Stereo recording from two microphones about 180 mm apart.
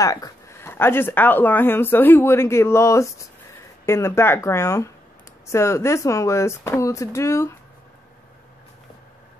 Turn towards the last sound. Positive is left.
turn(degrees=15)  # may be behind; listen again after turning